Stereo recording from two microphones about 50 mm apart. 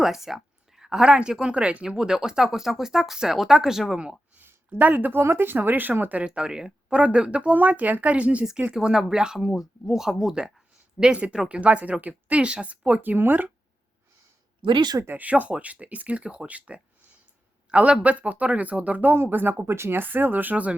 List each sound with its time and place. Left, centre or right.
0.0 s speech: centre
4.8 s speech: right
6.2 s speech: centre
8.7 s speech: centre
11.0 s speech: right
12.4 s speech: centre
13.0 s speech: right
15.2 s speech: right
19.1 s speech: right
19.6 s speech: right
20.0 s speech: right